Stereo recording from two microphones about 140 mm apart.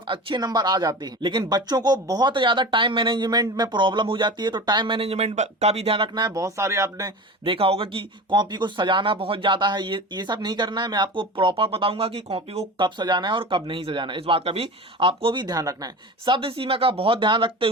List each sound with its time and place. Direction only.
0.1 s speech: 35° right (ahead or behind)
6.1 s speech: 25° right (ahead or behind)
7.4 s speech: 40° right (ahead or behind)